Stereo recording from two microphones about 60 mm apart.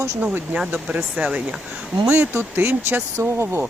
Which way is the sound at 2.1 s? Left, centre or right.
Right.